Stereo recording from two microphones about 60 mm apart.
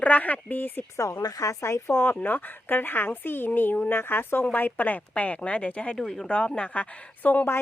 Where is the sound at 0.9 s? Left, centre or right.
Left.